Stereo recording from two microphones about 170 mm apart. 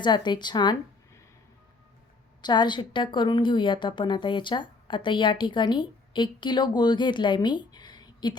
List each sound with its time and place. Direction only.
0.0 s speech: 25° left (ahead or behind)
2.4 s a woman's voice: 25° left (ahead or behind)